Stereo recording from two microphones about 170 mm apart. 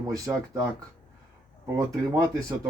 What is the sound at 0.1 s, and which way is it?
Speech, 20° right (ahead or behind).